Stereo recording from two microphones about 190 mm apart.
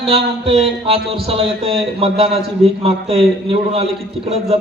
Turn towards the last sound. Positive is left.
turn(degrees=-30)  # may be behind; listen again after turning